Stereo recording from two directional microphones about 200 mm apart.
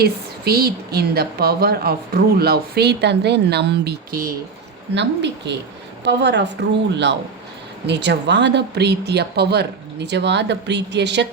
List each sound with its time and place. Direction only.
0.0 s a woman's voice: 50° right (ahead or behind)